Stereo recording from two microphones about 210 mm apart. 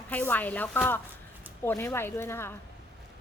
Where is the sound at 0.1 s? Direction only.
10° left (ahead or behind).